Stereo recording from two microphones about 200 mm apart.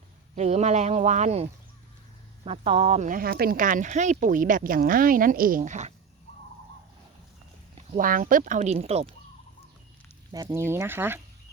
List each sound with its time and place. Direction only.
0.3 s speech: 35° right (ahead or behind)
7.9 s speech: 45° right (ahead or behind)
10.3 s speech: 15° right (ahead or behind)